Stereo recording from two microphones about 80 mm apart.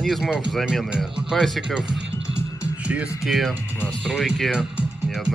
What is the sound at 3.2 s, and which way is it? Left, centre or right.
Speech, centre.